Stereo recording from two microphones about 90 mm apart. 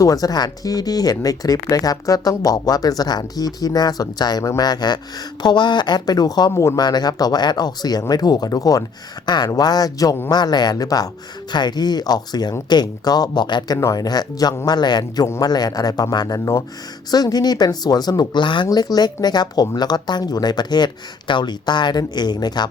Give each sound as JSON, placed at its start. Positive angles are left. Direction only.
{"t": 0.0, "sound": "speech", "side_deg": 40}
{"t": 9.2, "sound": "speech", "side_deg": 55}
{"t": 13.7, "sound": "speech", "side_deg": 40}
{"t": 18.7, "sound": "speech", "side_deg": 45}